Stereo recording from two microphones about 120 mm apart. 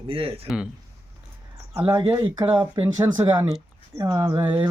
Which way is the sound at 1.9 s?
35° right (ahead or behind).